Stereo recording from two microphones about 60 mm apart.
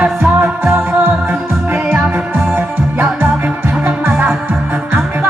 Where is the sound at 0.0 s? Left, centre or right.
Right.